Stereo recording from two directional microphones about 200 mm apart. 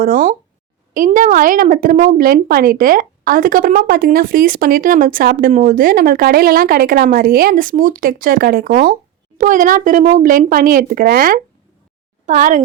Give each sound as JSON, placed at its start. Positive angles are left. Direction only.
{"t": 0.0, "sound": "a woman's voice", "side_deg": -45}